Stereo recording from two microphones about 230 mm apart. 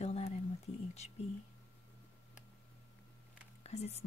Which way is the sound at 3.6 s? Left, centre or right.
Left.